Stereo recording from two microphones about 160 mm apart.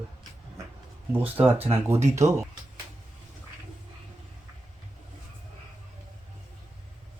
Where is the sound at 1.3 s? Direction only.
35° right (ahead or behind).